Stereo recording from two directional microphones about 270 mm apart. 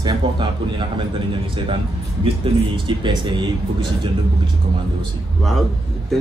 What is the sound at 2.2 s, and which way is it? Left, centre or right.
Speech, centre.